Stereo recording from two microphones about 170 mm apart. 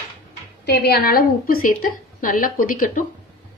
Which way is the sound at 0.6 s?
75° left (ahead or behind).